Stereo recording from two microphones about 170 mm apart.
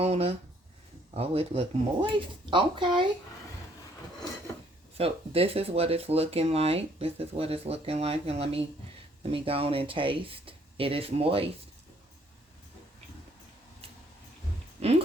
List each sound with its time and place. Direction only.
0.0 s speech: 35° right (ahead or behind)
4.9 s speech: 35° right (ahead or behind)
14.8 s a sound: 40° right (ahead or behind)